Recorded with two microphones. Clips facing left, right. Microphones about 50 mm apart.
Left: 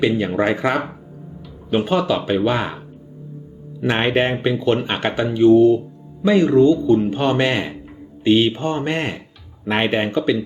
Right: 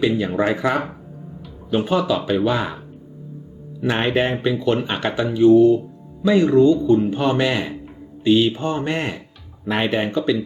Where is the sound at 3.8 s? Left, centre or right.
Left.